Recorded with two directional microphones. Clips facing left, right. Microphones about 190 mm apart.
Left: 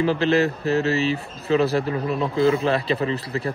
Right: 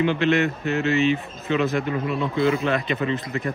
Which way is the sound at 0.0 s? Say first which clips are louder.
Left 1 dB; 35° left (ahead or behind).